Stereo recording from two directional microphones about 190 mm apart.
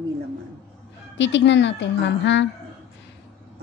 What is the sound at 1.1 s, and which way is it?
A woman's voice, 75° left (ahead or behind).